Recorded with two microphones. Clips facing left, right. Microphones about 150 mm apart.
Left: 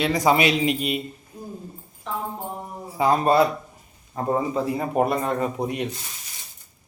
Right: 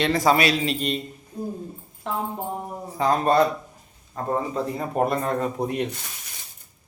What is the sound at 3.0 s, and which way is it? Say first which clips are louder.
A man's voice: left 1 dB; 10° left (ahead or behind).